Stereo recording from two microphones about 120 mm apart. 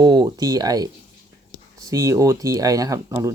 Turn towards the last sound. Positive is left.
turn(degrees=-25)  # may be behind; listen again after turning